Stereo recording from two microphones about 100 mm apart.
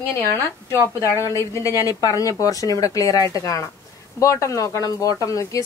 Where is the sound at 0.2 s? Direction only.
30° left (ahead or behind).